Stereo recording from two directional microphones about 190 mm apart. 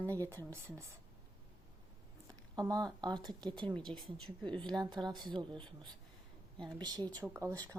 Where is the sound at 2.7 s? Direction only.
20° right (ahead or behind).